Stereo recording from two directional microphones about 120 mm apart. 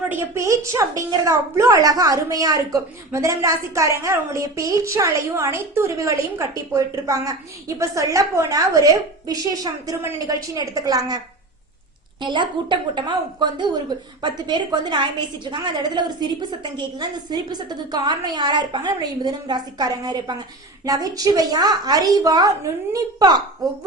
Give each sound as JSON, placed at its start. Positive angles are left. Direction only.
{"t": 0.1, "sound": "a woman's voice", "side_deg": -20}
{"t": 12.2, "sound": "a woman's voice", "side_deg": -40}